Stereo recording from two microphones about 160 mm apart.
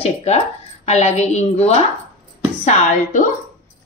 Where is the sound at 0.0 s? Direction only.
40° left (ahead or behind).